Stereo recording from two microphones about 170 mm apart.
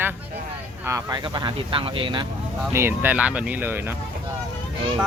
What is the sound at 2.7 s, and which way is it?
Speech, 15° right (ahead or behind).